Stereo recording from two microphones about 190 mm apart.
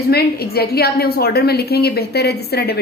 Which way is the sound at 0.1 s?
55° left (ahead or behind).